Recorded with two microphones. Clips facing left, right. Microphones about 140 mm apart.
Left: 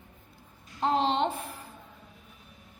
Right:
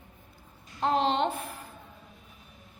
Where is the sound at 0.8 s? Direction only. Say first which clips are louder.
Even; 25° left (ahead or behind).